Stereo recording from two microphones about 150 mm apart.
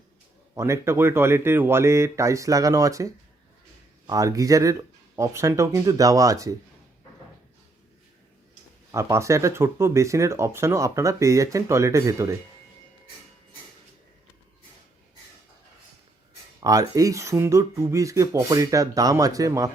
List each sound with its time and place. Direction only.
0.5 s speech: 20° right (ahead or behind)
8.9 s speech: 20° right (ahead or behind)
16.6 s speech: 25° right (ahead or behind)